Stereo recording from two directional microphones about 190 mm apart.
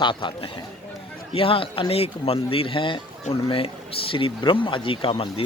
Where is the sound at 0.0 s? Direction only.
25° left (ahead or behind).